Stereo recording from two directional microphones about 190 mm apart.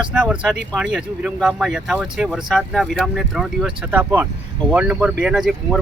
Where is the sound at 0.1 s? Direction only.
5° right (ahead or behind).